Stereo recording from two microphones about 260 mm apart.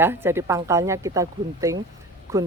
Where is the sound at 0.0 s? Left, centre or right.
Centre.